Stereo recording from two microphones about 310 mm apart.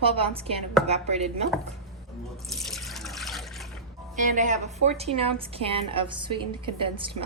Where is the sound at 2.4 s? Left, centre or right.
Centre.